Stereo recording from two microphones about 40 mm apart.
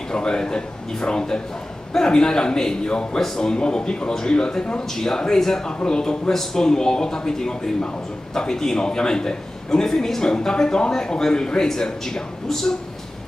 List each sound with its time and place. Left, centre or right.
0.1 s a man's voice: centre